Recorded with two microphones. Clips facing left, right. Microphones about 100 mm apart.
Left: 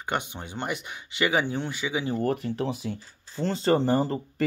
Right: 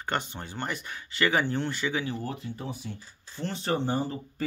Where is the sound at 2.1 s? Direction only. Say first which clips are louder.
Left 9 dB; 65° left (ahead or behind).